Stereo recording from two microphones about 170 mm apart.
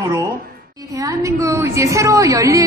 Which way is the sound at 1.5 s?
15° right (ahead or behind).